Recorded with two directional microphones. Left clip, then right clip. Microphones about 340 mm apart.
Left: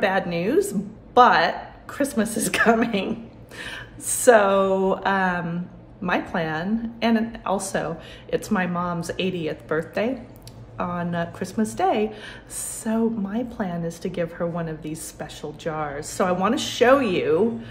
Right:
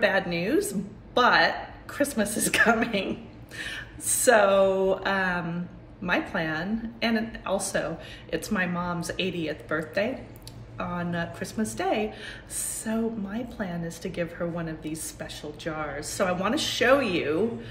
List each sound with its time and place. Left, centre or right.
0.0 s a woman's voice: centre